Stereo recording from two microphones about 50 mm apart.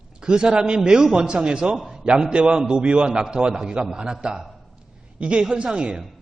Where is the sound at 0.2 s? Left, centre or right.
Centre.